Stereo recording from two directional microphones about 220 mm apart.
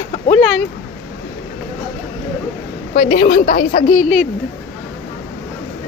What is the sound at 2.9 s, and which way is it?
Speech, 40° left (ahead or behind).